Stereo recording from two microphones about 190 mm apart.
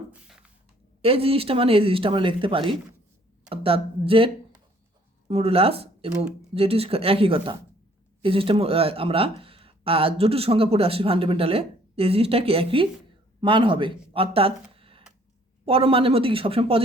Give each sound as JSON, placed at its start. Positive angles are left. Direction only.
{"t": 0.1, "sound": "a sound", "side_deg": -5}
{"t": 1.0, "sound": "speech", "side_deg": -30}
{"t": 5.3, "sound": "speech", "side_deg": -30}
{"t": 14.8, "sound": "tick", "side_deg": -30}
{"t": 15.6, "sound": "speech", "side_deg": -30}